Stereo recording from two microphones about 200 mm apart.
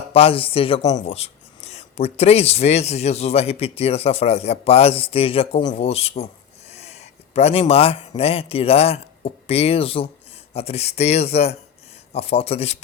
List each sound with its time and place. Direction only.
0.1 s a man's voice: 30° left (ahead or behind)